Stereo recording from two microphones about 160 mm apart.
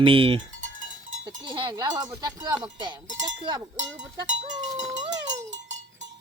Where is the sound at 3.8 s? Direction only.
45° right (ahead or behind).